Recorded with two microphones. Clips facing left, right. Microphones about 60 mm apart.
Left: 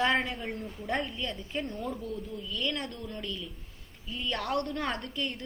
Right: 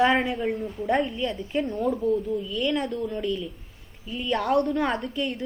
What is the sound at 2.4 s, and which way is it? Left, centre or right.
A woman's voice, centre.